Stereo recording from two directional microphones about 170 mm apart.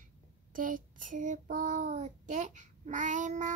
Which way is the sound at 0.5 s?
55° right (ahead or behind).